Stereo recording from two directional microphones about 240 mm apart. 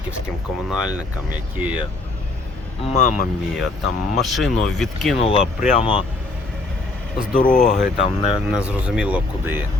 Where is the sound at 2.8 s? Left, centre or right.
Left.